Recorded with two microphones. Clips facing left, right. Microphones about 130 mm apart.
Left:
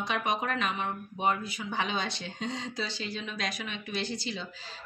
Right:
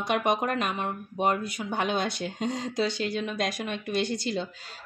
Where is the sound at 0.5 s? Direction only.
50° right (ahead or behind).